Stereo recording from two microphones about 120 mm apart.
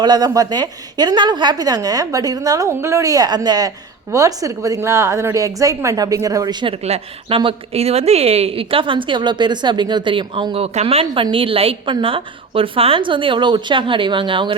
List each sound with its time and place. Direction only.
0.0 s a woman's voice: 35° right (ahead or behind)
6.8 s a woman's voice: 55° right (ahead or behind)